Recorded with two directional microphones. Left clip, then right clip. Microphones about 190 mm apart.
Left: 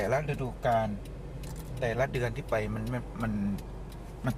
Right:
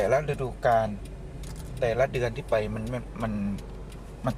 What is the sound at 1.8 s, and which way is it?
Speech, centre (ahead or behind).